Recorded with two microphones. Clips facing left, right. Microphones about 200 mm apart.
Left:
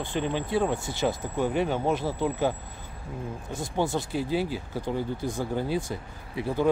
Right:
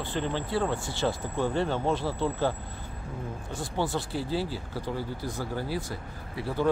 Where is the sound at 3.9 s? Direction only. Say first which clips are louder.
Left 3 dB; 15° left (ahead or behind).